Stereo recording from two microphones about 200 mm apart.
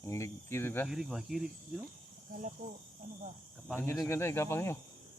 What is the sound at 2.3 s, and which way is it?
Speech, 40° right (ahead or behind).